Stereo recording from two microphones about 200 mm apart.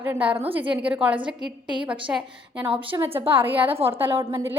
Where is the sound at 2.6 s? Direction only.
25° right (ahead or behind).